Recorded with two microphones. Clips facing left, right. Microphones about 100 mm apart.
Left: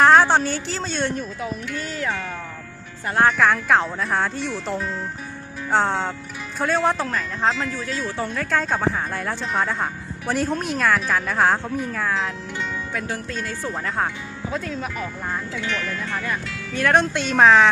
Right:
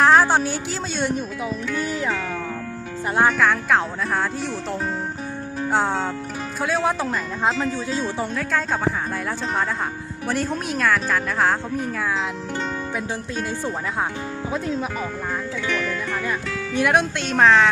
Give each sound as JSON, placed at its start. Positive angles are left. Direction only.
{"t": 0.0, "sound": "a woman's voice", "side_deg": 0}
{"t": 3.2, "sound": "speech", "side_deg": 0}
{"t": 7.6, "sound": "speech", "side_deg": -25}
{"t": 8.4, "sound": "speech", "side_deg": 0}
{"t": 10.2, "sound": "speech", "side_deg": 0}
{"t": 14.5, "sound": "speech", "side_deg": -20}
{"t": 16.7, "sound": "speech", "side_deg": -10}